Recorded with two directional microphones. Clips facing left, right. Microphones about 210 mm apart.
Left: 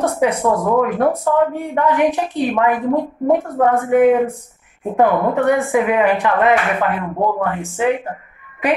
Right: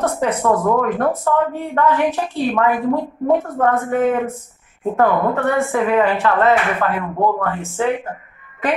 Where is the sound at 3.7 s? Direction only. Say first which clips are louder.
Left 7 dB; 15° left (ahead or behind).